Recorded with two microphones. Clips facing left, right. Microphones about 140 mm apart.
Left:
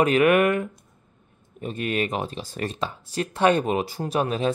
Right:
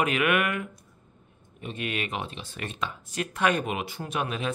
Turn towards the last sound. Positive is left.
turn(degrees=35)  # may be behind; listen again after turning